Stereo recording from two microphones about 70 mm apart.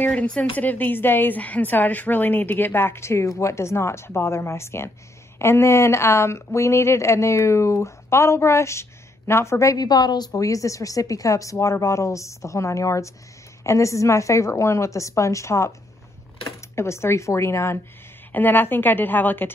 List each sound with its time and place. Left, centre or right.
0.0 s a woman's voice: centre; by 9.8 s left
9.8 s a woman's voice: left
10.4 s a woman's voice: left
18.3 s a woman's voice: left